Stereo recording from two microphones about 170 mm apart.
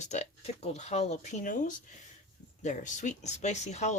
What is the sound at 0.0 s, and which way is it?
Speech, 45° left (ahead or behind).